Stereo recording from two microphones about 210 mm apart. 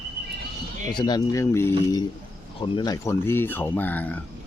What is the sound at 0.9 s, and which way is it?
Speech, 20° left (ahead or behind).